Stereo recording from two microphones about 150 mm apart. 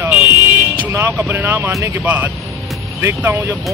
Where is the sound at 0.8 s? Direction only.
15° right (ahead or behind).